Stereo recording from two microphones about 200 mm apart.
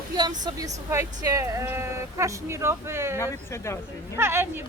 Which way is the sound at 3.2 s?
15° left (ahead or behind).